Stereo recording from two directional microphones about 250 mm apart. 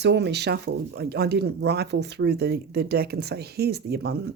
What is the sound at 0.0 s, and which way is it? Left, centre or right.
Speech, right.